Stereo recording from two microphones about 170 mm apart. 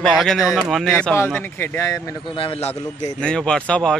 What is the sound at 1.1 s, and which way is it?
Speech, 10° left (ahead or behind).